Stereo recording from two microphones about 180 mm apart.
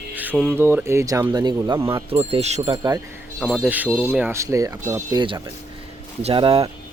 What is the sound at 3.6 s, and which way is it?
Speech, 10° right (ahead or behind).